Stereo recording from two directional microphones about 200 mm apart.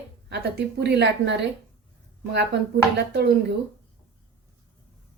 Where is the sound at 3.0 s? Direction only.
55° right (ahead or behind).